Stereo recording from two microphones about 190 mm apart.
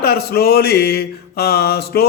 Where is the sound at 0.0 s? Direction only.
55° left (ahead or behind).